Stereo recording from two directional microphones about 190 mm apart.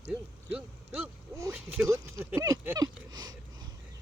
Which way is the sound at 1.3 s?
15° right (ahead or behind).